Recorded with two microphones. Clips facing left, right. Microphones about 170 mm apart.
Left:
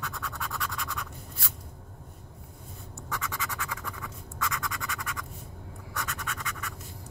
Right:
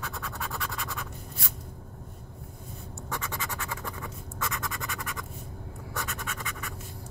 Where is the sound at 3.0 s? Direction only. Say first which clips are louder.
Even; 30° right (ahead or behind).